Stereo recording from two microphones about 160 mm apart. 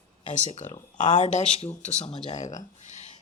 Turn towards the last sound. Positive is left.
turn(degrees=45)  # may be behind; listen again after turning